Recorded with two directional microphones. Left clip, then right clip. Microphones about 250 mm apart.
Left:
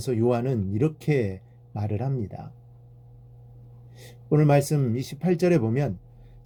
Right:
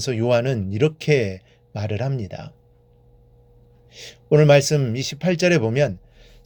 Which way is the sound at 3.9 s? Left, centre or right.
Right.